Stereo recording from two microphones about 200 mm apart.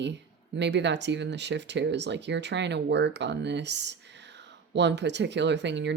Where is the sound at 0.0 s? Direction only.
60° right (ahead or behind).